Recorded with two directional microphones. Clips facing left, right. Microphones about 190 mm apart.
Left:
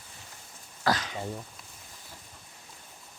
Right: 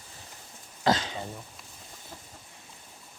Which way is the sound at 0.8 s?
25° right (ahead or behind).